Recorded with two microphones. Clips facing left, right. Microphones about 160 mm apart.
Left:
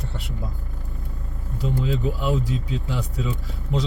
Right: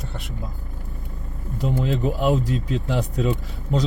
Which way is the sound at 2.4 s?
70° right (ahead or behind).